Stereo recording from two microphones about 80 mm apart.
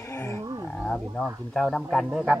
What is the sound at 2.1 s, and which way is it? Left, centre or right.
Music, centre.